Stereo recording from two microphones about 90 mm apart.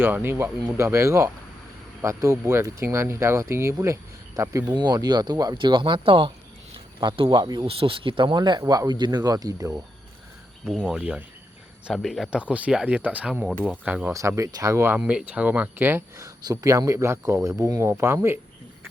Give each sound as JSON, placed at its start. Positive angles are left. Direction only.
{"t": 0.0, "sound": "speech", "side_deg": -25}
{"t": 4.7, "sound": "speech", "side_deg": -50}
{"t": 5.5, "sound": "speech", "side_deg": -60}
{"t": 7.4, "sound": "speech", "side_deg": -50}
{"t": 7.8, "sound": "speech", "side_deg": -80}
{"t": 10.8, "sound": "speech", "side_deg": -10}
{"t": 12.3, "sound": "speech", "side_deg": -15}
{"t": 14.1, "sound": "speech", "side_deg": -35}
{"t": 16.1, "sound": "speech", "side_deg": -45}